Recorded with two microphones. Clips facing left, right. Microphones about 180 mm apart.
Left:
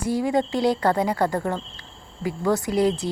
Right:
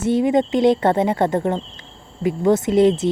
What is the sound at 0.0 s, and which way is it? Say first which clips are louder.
Speech: right 5 dB; 25° right (ahead or behind).